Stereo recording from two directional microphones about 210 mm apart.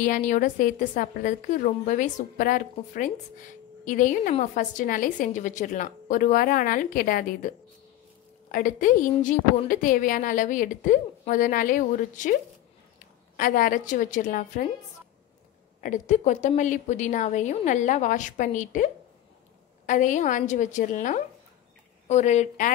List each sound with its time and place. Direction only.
0.0 s a woman's voice: 35° left (ahead or behind)
13.4 s a woman's voice: 40° left (ahead or behind)
15.8 s a woman's voice: 35° left (ahead or behind)
19.9 s a woman's voice: 35° left (ahead or behind)